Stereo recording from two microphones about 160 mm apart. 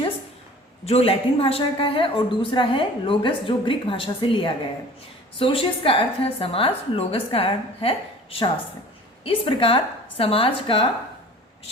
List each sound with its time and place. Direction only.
0.9 s a woman's voice: 40° left (ahead or behind)